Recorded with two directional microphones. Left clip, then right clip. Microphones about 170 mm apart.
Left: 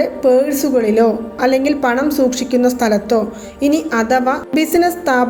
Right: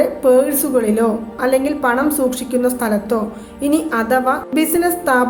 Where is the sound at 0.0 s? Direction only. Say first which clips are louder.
Even; 10° left (ahead or behind).